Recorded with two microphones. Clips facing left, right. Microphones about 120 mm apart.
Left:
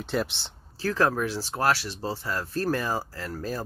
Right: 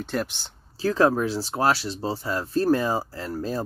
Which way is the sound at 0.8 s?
20° right (ahead or behind).